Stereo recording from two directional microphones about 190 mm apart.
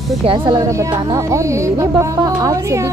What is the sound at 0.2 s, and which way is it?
Speech, 25° right (ahead or behind).